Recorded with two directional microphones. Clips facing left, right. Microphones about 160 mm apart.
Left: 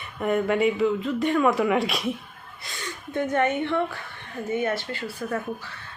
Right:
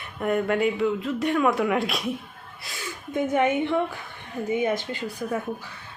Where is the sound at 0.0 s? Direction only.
Centre (ahead or behind).